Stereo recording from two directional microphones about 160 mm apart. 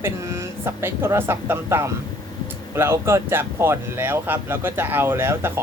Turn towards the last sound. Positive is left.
turn(degrees=-15)  # may be behind; listen again after turning